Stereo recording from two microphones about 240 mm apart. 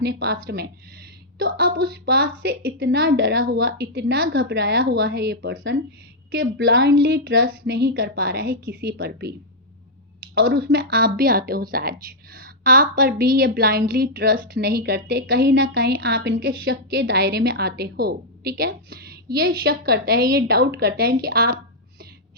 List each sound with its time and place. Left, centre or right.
0.0 s a woman's voice: right
10.3 s speech: right